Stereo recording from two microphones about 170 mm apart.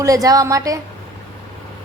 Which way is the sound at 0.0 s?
20° right (ahead or behind).